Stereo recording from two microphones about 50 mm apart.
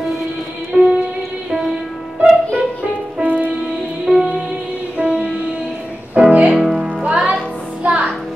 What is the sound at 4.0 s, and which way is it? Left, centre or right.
Music, centre.